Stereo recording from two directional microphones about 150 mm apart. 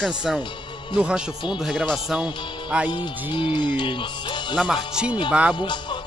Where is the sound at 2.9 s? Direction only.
35° left (ahead or behind).